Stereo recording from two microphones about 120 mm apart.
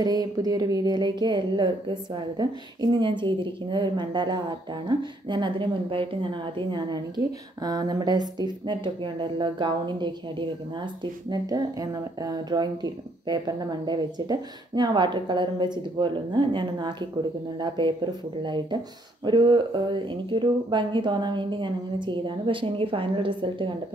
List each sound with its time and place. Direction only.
0.0 s speech: 35° right (ahead or behind)
7.6 s speech: 35° right (ahead or behind)